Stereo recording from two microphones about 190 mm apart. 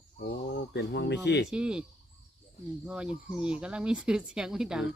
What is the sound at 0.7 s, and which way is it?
Speech, 65° left (ahead or behind).